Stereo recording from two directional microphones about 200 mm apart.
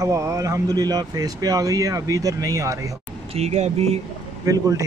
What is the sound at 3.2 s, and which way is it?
Speech, 30° right (ahead or behind).